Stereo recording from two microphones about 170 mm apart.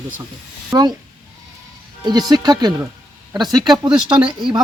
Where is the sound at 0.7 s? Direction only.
25° right (ahead or behind).